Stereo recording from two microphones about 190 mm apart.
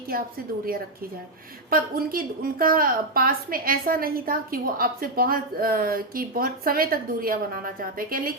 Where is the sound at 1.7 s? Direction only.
50° right (ahead or behind).